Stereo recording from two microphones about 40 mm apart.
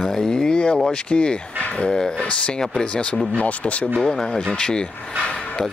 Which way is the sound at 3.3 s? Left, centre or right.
Left.